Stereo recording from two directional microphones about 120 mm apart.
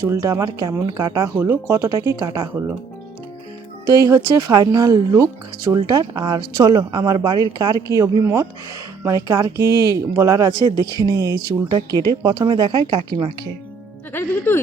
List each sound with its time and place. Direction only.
0.0 s speech: 25° right (ahead or behind)
3.9 s speech: 30° right (ahead or behind)
14.1 s speech: 20° left (ahead or behind)